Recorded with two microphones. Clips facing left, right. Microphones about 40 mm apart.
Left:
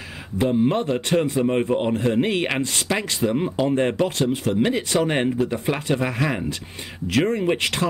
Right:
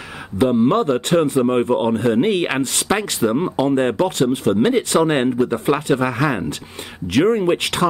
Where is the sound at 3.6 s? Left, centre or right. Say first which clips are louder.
Right 3 dB; right.